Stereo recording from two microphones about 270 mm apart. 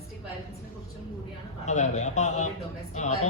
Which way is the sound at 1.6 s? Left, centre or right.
Left.